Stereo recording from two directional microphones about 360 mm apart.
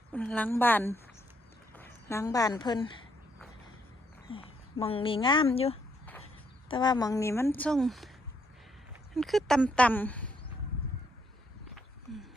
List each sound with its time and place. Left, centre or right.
0.1 s speech: centre
4.3 s speech: centre
9.1 s speech: centre